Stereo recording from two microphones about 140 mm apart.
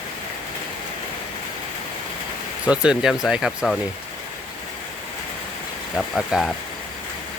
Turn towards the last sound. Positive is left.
turn(degrees=0)  # may be behind; listen again after turning